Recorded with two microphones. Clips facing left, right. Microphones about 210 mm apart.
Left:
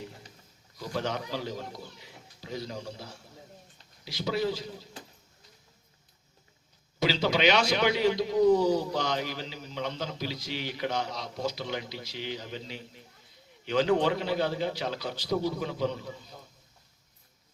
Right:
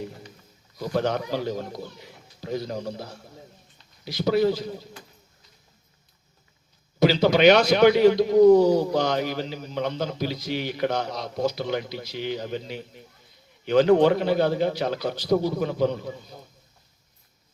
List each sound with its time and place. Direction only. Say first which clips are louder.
0.8 s a man's voice: right 7 dB; 55° right (ahead or behind)
7.0 s a man's voice: right 8 dB; 50° right (ahead or behind)